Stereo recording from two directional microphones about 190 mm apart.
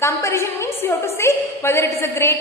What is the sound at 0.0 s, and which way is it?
A woman's voice, 15° left (ahead or behind).